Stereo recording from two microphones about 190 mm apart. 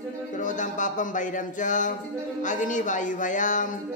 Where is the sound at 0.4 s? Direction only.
40° left (ahead or behind).